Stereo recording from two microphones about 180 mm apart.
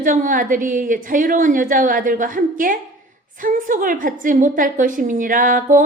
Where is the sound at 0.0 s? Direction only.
50° right (ahead or behind).